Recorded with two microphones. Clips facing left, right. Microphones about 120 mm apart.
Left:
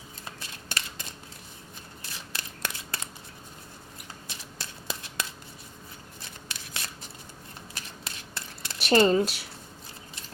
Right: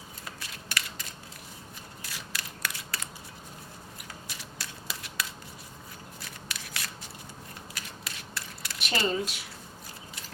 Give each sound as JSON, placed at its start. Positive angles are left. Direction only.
{"t": 0.3, "sound": "a sound", "side_deg": 25}
{"t": 2.0, "sound": "scissors", "side_deg": 25}
{"t": 4.3, "sound": "shuffling cards", "side_deg": 25}
{"t": 6.2, "sound": "shuffling cards", "side_deg": 25}
{"t": 7.7, "sound": "mechanisms", "side_deg": 30}
{"t": 8.9, "sound": "speech", "side_deg": 45}